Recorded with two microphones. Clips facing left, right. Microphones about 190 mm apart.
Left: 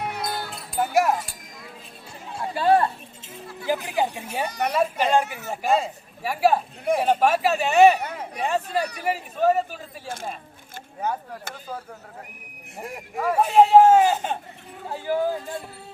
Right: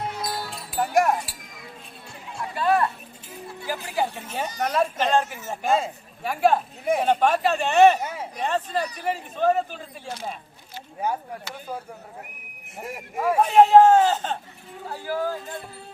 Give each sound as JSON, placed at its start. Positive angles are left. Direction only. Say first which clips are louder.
{"t": 0.1, "sound": "music", "louder": "left 1 dB", "side_deg": 65}
{"t": 0.5, "sound": "wind chime", "louder": "even", "side_deg": 0}
{"t": 2.4, "sound": "music", "louder": "left 3 dB", "side_deg": 30}
{"t": 3.7, "sound": "speech", "louder": "left 3 dB", "side_deg": 20}
{"t": 4.4, "sound": "a woman's voice", "louder": "left 1 dB", "side_deg": 65}
{"t": 4.7, "sound": "speech", "louder": "left 1 dB", "side_deg": 5}
{"t": 5.2, "sound": "a woman's voice", "louder": "left 2 dB", "side_deg": 65}
{"t": 5.6, "sound": "speech", "louder": "left 1 dB", "side_deg": 0}
{"t": 11.0, "sound": "speech", "louder": "right 1 dB", "side_deg": -10}
{"t": 12.7, "sound": "speech", "louder": "even", "side_deg": 0}